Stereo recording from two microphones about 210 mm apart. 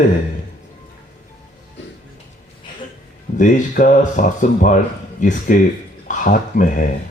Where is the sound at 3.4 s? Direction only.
40° left (ahead or behind).